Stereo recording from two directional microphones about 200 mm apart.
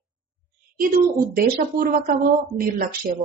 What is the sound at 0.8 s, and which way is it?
A woman's voice, 45° right (ahead or behind).